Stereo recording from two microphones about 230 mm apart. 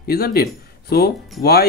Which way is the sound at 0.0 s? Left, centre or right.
Left.